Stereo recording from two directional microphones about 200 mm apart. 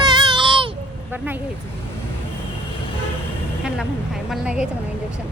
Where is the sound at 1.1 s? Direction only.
10° right (ahead or behind).